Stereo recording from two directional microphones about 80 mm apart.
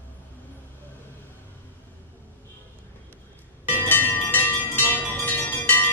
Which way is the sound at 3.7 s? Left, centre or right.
Left.